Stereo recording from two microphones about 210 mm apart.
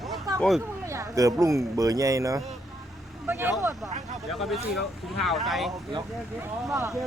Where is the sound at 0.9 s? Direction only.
15° right (ahead or behind).